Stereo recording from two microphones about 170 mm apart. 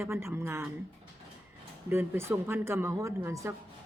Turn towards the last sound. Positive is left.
turn(degrees=-15)  # may be behind; listen again after turning